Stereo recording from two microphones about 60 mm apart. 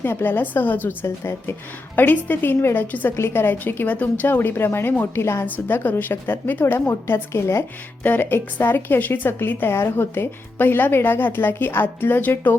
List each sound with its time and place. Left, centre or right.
0.0 s a woman's voice: left
1.0 s a woman's voice: left
2.0 s a woman's voice: left
2.8 s a woman's voice: left
3.2 s a woman's voice: left
5.5 s a woman's voice: left
6.7 s a woman's voice: left
8.0 s a woman's voice: left